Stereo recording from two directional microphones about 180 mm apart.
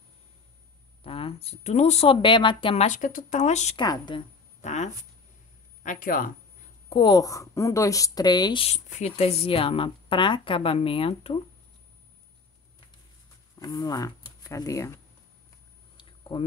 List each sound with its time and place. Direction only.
1.0 s speech: 30° left (ahead or behind)
3.8 s a woman's voice: 25° left (ahead or behind)
4.6 s speech: 40° left (ahead or behind)
6.9 s a woman's voice: 25° left (ahead or behind)
8.6 s speech: 40° left (ahead or behind)
13.6 s speech: 20° left (ahead or behind)
16.0 s a sound: 25° left (ahead or behind)